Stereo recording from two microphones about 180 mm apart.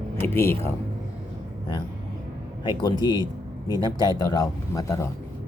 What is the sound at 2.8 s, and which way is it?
Speech, 25° left (ahead or behind).